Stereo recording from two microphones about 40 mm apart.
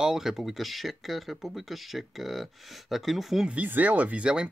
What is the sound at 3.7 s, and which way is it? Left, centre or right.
Speech, right.